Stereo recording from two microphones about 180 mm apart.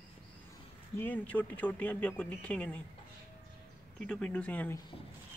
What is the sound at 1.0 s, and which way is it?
Speech, 10° left (ahead or behind).